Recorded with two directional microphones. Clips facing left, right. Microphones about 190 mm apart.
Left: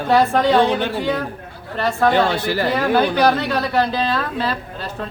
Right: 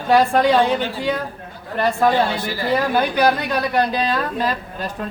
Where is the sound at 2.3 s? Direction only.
70° left (ahead or behind).